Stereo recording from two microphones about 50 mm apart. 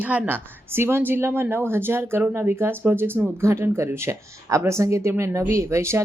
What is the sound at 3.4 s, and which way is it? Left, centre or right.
Speech, right.